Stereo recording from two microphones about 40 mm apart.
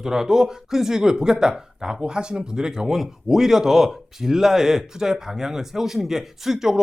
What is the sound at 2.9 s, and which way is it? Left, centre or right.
Speech, centre.